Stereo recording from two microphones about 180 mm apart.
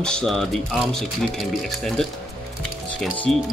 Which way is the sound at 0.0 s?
5° left (ahead or behind).